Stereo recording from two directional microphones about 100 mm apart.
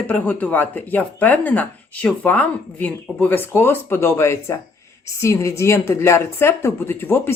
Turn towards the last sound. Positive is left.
turn(degrees=25)  # may be behind; listen again after turning